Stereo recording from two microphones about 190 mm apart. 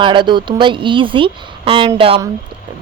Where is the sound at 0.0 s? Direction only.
25° right (ahead or behind).